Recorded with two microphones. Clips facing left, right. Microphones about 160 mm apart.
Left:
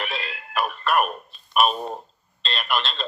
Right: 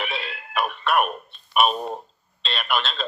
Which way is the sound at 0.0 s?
Centre (ahead or behind).